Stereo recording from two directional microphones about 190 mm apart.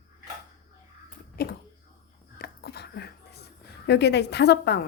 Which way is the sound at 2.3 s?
55° left (ahead or behind).